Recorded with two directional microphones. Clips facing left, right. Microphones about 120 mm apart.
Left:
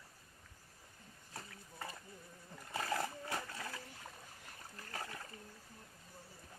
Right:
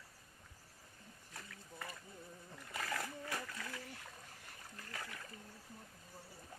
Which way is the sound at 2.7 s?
30° left (ahead or behind).